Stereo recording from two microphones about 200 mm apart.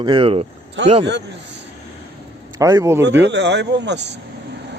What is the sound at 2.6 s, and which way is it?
Speech, 15° right (ahead or behind).